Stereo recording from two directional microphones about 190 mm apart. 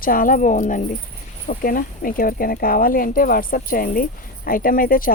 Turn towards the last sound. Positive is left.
turn(degrees=50)  # may be behind; listen again after turning